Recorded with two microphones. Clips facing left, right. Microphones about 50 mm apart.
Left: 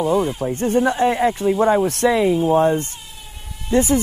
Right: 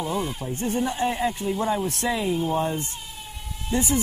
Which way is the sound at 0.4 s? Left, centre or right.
Left.